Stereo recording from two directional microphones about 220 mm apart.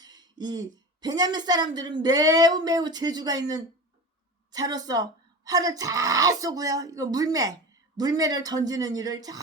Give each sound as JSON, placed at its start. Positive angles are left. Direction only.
{"t": 0.0, "sound": "a woman's voice", "side_deg": -20}